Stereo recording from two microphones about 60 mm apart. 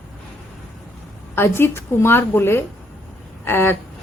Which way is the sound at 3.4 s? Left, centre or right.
Left.